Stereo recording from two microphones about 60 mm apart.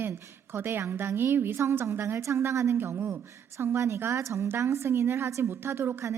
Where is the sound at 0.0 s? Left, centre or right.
Right.